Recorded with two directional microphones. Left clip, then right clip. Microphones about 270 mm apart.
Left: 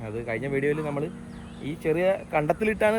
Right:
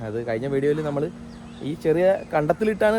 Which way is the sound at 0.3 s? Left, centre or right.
Centre.